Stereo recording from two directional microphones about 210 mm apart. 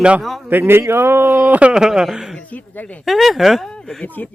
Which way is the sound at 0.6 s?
10° right (ahead or behind).